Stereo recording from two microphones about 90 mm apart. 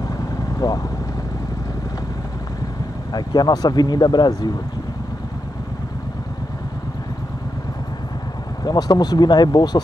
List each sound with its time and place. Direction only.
0.6 s speech: 45° left (ahead or behind)
3.1 s speech: 50° left (ahead or behind)
8.6 s speech: 45° left (ahead or behind)